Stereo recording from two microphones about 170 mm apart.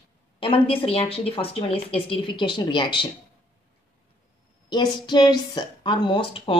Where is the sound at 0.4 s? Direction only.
30° left (ahead or behind).